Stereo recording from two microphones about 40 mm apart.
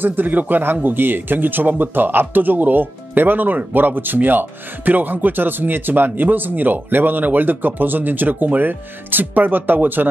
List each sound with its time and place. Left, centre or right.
0.0 s speech: right